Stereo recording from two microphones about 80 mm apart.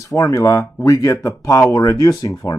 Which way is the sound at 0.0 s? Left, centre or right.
Left.